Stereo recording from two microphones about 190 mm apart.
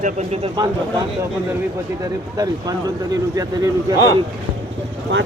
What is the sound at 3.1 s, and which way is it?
Speech, 20° right (ahead or behind).